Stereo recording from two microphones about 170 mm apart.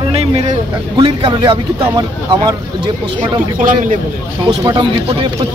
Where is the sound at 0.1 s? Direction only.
40° right (ahead or behind).